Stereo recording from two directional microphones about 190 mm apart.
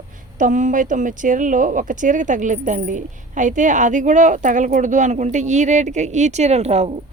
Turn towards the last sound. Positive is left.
turn(degrees=-35)  # may be behind; listen again after turning